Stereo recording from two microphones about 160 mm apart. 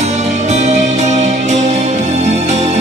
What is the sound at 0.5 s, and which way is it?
Music, 45° right (ahead or behind).